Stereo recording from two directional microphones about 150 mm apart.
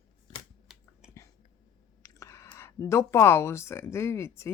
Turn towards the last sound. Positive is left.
turn(degrees=15)  # may be behind; listen again after turning